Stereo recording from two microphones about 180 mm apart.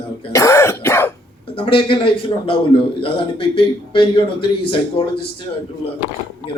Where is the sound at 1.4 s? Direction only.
30° left (ahead or behind).